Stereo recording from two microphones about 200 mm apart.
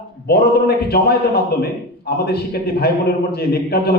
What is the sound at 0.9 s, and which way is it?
A man's voice, 50° left (ahead or behind).